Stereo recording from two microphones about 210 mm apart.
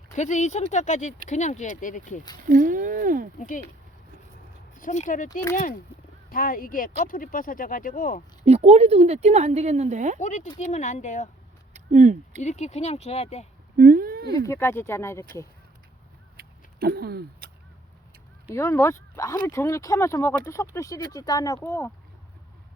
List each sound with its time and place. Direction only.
0.1 s speech: 35° left (ahead or behind)
2.5 s speech: 40° right (ahead or behind)
4.8 s speech: 35° left (ahead or behind)
8.4 s a woman's voice: 30° right (ahead or behind)
10.2 s speech: 35° left (ahead or behind)
11.7 s a sound: 35° right (ahead or behind)
12.4 s speech: 35° left (ahead or behind)
13.7 s a sound: 45° right (ahead or behind)
14.3 s speech: 15° left (ahead or behind)
16.4 s vehicle: 45° right (ahead or behind)
18.5 s speech: 15° left (ahead or behind)